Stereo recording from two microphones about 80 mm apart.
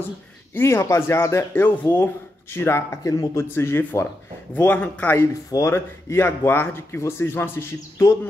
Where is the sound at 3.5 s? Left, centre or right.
Left.